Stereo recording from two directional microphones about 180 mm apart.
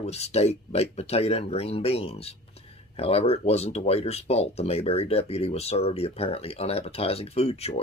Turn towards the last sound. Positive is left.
turn(degrees=35)  # may be behind; listen again after turning